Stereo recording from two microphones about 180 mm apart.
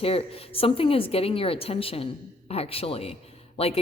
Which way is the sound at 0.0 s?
30° left (ahead or behind).